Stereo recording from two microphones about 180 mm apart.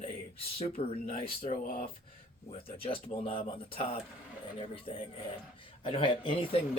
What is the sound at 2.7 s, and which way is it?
Speech, 30° left (ahead or behind).